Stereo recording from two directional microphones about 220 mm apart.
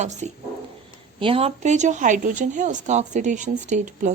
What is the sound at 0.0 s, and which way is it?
Speech, 30° right (ahead or behind).